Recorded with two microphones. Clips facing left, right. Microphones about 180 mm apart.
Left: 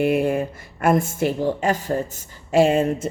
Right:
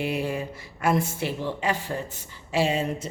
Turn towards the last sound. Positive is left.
turn(degrees=50)  # may be behind; listen again after turning